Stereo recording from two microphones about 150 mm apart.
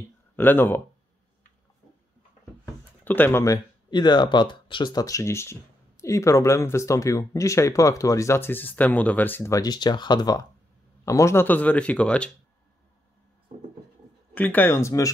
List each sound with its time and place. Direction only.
0.4 s speech: 15° left (ahead or behind)
2.6 s a sound: 10° left (ahead or behind)
3.9 s speech: 30° left (ahead or behind); by 12.3 s 5° left (ahead or behind)
14.3 s speech: 10° left (ahead or behind)